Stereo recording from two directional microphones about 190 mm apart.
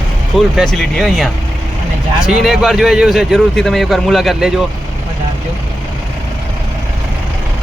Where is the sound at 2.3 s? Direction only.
Centre (ahead or behind).